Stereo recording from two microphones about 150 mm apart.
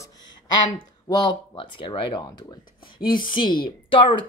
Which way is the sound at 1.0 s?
30° left (ahead or behind).